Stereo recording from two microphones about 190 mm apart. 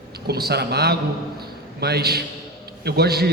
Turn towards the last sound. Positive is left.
turn(degrees=-55)  # may be behind; listen again after turning